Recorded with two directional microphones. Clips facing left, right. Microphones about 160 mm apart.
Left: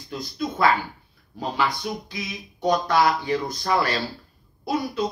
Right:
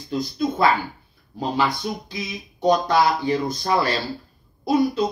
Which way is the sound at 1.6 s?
25° right (ahead or behind).